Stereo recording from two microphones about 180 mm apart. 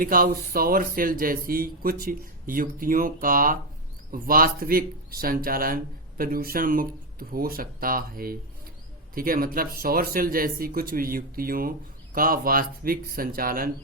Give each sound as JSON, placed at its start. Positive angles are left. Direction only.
{"t": 0.0, "sound": "speech", "side_deg": -50}